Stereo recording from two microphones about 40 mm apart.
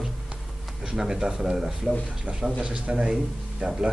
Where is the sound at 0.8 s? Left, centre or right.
Centre; by 3.1 s right.